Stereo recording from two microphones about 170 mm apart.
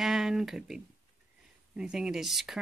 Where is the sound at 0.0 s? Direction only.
Centre (ahead or behind).